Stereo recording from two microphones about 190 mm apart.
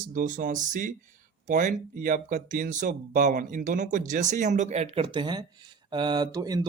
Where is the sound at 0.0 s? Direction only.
45° right (ahead or behind).